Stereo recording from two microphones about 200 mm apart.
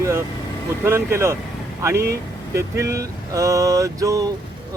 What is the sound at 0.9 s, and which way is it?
Speech, 15° right (ahead or behind).